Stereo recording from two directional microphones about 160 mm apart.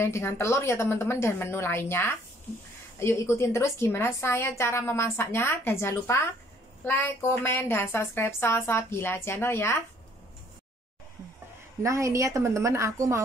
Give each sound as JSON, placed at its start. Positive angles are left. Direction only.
{"t": 0.0, "sound": "a woman's voice", "side_deg": 15}
{"t": 11.8, "sound": "a woman's voice", "side_deg": -20}